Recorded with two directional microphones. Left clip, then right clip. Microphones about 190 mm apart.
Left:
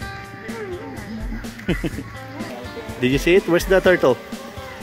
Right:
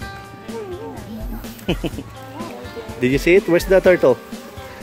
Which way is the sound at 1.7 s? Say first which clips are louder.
Right 1 dB; 20° right (ahead or behind).